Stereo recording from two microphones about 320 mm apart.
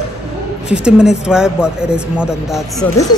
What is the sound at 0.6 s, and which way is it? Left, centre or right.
Speech, centre.